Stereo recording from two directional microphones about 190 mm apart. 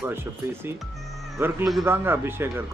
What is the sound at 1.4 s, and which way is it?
Speech, 10° right (ahead or behind).